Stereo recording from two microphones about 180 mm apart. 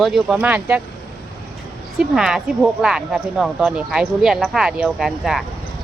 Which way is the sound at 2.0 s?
5° right (ahead or behind).